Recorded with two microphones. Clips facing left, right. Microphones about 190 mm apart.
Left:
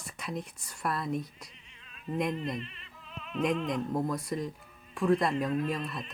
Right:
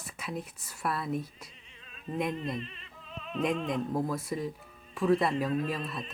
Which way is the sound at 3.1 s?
35° right (ahead or behind).